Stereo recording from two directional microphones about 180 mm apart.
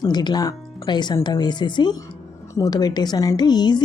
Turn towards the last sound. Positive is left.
turn(degrees=25)  # may be behind; listen again after turning